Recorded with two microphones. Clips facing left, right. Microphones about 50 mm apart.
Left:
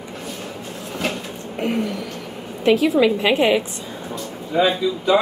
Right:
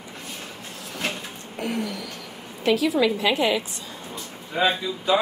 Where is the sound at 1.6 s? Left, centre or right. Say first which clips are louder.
Left 5 dB; left.